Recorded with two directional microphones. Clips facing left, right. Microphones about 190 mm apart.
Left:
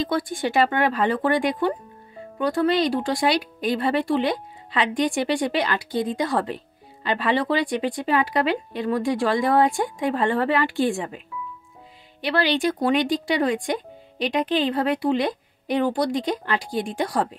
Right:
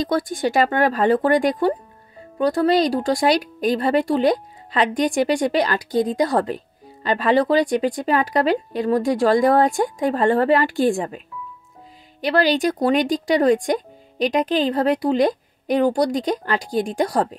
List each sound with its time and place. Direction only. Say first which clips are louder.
0.0 s speech: right 3 dB; 40° right (ahead or behind)
12.2 s speech: right 4 dB; 40° right (ahead or behind)